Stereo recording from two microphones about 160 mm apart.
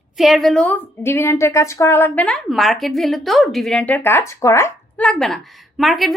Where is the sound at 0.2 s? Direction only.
Centre (ahead or behind).